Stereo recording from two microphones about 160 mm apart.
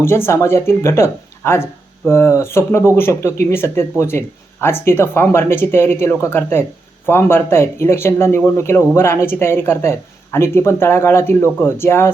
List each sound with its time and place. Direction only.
0.0 s speech: 15° left (ahead or behind)